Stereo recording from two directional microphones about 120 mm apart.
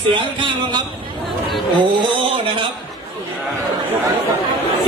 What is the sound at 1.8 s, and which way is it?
Speech, 40° right (ahead or behind).